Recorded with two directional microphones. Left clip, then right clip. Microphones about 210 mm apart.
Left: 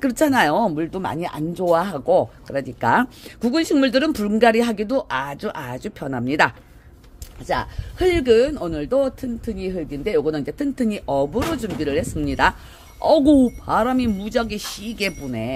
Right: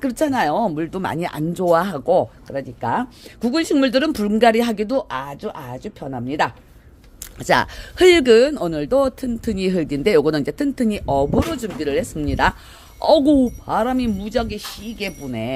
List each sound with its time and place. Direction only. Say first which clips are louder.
0.0 s speech: left 2 dB; 10° left (ahead or behind)
0.7 s speech: right 1 dB; 10° right (ahead or behind)
2.8 s speech: left 4 dB; 20° left (ahead or behind)
3.3 s speech: even; 5° right (ahead or behind); by 6.5 s 15° left (ahead or behind)
7.4 s speech: right 7 dB; 40° right (ahead or behind); by 14.6 s centre (ahead or behind)
14.8 s speech: left 6 dB; 15° left (ahead or behind)
15.2 s speech: right 1 dB; 5° right (ahead or behind)